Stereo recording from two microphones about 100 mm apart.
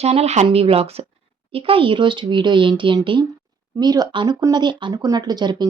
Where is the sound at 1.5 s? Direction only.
70° right (ahead or behind).